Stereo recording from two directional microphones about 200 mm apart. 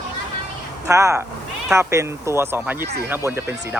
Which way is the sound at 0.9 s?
15° right (ahead or behind).